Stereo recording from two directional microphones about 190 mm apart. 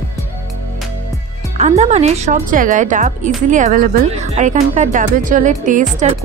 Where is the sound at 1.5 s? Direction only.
35° right (ahead or behind).